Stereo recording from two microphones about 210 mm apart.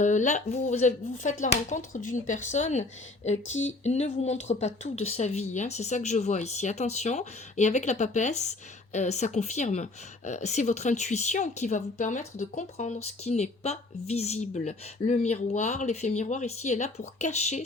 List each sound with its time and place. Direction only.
0.0 s speech: 35° left (ahead or behind)